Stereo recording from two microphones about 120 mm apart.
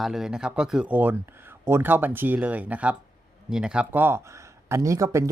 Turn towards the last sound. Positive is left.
turn(degrees=-25)  # may be behind; listen again after turning